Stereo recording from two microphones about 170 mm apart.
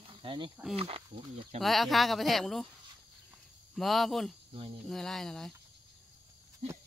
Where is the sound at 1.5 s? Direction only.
Centre (ahead or behind).